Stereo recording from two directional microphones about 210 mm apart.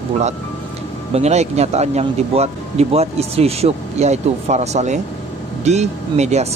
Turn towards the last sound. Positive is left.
turn(degrees=-30)  # may be behind; listen again after turning